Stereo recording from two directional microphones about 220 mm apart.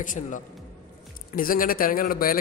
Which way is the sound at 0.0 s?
35° left (ahead or behind).